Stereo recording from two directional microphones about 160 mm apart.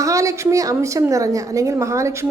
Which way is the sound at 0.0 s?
20° right (ahead or behind).